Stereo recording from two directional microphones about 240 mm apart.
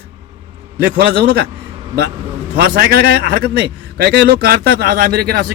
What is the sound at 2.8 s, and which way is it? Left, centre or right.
Speech, right.